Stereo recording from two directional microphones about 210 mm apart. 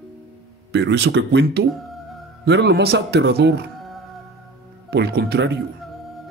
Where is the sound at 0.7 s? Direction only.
55° right (ahead or behind).